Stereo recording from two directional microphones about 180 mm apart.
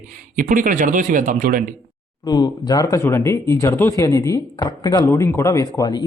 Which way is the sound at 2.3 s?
20° left (ahead or behind).